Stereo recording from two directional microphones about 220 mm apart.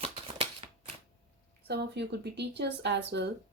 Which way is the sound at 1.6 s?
50° right (ahead or behind).